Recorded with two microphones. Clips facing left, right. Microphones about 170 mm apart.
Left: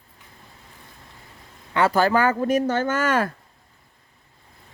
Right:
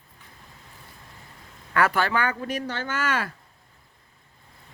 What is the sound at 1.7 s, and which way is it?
Speech, 25° left (ahead or behind).